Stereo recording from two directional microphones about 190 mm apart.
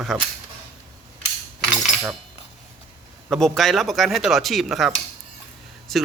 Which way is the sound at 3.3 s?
Centre (ahead or behind).